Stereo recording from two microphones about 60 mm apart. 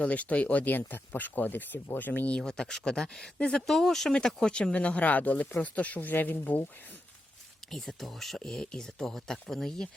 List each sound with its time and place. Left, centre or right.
0.0 s speech: left
2.3 s speech: centre; by 6.7 s left
7.7 s speech: centre